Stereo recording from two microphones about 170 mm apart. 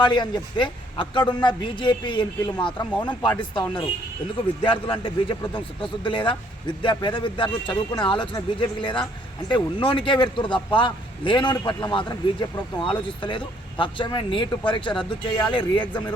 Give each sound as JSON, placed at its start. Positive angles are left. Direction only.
{"t": 0.0, "sound": "a man's voice", "side_deg": 25}